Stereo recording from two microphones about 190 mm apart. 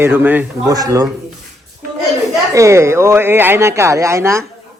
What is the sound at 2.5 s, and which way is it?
Speech, 15° right (ahead or behind).